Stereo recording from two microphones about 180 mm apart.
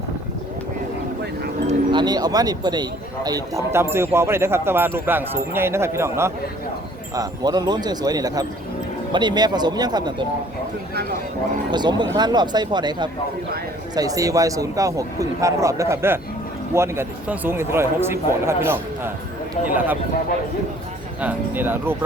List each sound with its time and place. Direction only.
1.9 s speech: 25° right (ahead or behind)
11.7 s speech: 25° right (ahead or behind)
21.2 s speech: 10° right (ahead or behind)